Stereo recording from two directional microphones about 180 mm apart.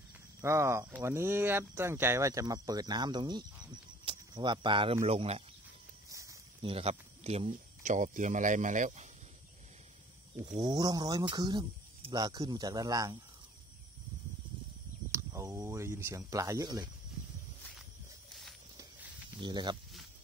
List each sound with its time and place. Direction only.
0.4 s speech: 15° right (ahead or behind); by 5.4 s 35° right (ahead or behind)
6.0 s a sound: 20° right (ahead or behind)
6.6 s speech: 35° right (ahead or behind)
10.4 s speech: 25° right (ahead or behind)
15.0 s speech: 15° right (ahead or behind)
19.4 s speech: 25° right (ahead or behind)